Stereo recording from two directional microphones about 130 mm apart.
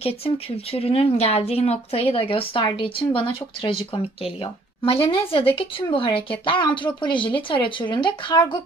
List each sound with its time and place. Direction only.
0.7 s a woman's voice: 50° left (ahead or behind)